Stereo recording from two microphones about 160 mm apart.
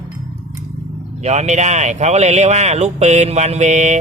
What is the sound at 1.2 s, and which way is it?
Speech, 45° right (ahead or behind).